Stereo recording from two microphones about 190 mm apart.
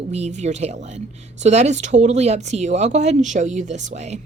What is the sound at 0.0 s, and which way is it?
Speech, 35° right (ahead or behind).